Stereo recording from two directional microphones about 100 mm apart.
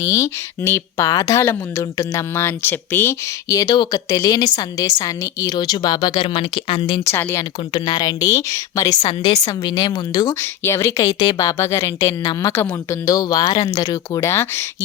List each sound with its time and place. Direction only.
0.0 s a woman's voice: 30° left (ahead or behind)
3.5 s a woman's voice: 40° left (ahead or behind)
5.5 s speech: 45° left (ahead or behind)
6.2 s speech: 65° left (ahead or behind)
7.0 s speech: 25° left (ahead or behind)
7.7 s a woman's voice: 45° left (ahead or behind)
10.4 s speech: 25° left (ahead or behind)
12.2 s speech: 45° left (ahead or behind)
12.5 s speech: 25° left (ahead or behind)
13.1 s a woman's voice: 40° left (ahead or behind)